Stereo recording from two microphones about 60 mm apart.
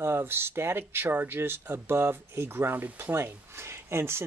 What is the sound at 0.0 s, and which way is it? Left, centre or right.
Speech, right.